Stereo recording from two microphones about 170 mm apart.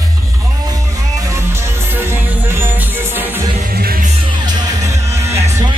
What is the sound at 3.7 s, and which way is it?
Music, 60° right (ahead or behind).